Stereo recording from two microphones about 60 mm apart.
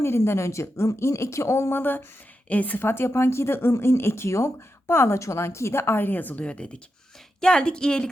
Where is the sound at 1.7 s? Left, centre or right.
Left.